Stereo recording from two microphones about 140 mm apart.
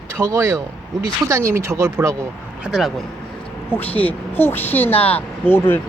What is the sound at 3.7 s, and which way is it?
Speech, 10° left (ahead or behind).